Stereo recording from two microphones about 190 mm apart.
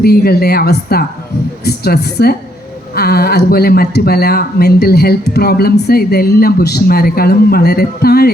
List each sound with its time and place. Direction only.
0.0 s speech: 55° left (ahead or behind)